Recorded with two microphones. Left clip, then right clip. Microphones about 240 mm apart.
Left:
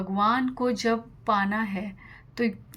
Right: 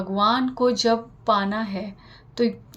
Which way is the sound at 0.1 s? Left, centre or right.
Left.